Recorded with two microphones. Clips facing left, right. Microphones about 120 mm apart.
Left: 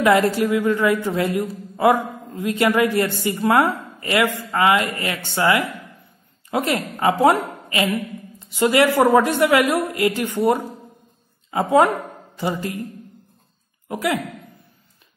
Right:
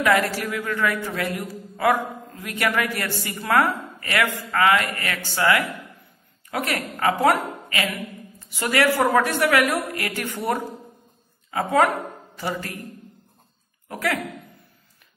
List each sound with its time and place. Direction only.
0.0 s a man's voice: 25° left (ahead or behind)
13.8 s speech: 20° left (ahead or behind)